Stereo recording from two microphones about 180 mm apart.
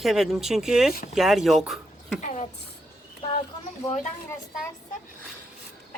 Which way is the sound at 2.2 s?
40° left (ahead or behind).